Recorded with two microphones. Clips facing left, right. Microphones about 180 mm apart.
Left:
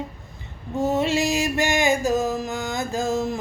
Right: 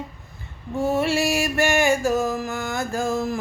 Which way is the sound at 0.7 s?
20° left (ahead or behind).